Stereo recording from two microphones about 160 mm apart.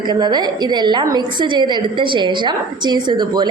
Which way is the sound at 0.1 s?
25° right (ahead or behind).